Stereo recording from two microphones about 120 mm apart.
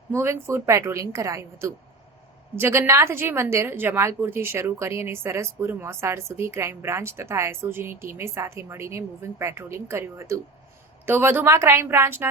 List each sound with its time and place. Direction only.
0.2 s a woman's voice: 20° right (ahead or behind)